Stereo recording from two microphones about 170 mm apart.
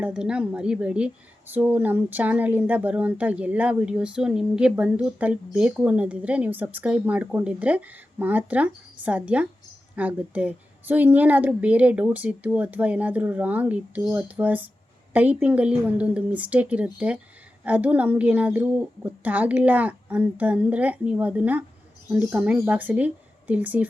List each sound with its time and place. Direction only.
0.0 s speech: 5° right (ahead or behind)